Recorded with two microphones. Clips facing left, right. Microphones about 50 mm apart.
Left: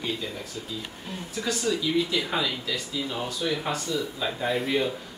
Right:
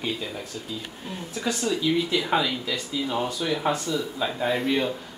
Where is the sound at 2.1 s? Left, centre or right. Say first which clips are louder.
Right 3 dB; centre.